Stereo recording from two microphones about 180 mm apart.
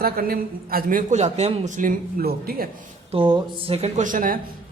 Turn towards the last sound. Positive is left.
turn(degrees=-50)  # may be behind; listen again after turning